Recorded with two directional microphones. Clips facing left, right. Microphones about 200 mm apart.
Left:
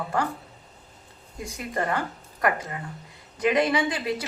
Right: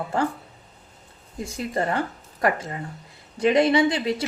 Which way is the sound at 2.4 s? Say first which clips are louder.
Right 2 dB; 25° right (ahead or behind).